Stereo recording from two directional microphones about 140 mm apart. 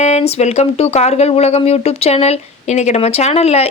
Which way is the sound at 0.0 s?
50° left (ahead or behind).